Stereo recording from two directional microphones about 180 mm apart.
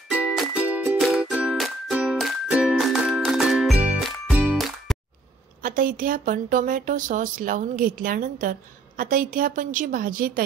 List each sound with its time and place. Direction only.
0.1 s music: 5° right (ahead or behind)
5.6 s speech: 50° right (ahead or behind)